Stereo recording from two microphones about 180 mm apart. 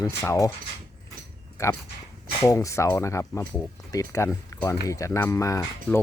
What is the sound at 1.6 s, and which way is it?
Speech, 15° left (ahead or behind).